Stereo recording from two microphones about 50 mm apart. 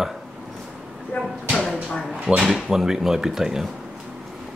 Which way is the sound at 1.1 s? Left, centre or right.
Left.